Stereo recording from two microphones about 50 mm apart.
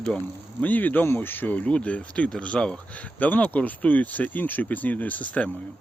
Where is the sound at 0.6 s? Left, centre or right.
Left.